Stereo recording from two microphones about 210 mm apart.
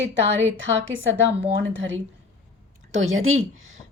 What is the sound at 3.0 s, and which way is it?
Speech, 75° right (ahead or behind).